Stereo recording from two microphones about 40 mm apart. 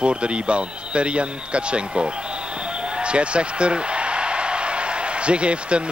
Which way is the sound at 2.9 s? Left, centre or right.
Right.